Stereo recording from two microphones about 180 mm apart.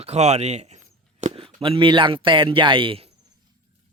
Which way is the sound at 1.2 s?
30° right (ahead or behind).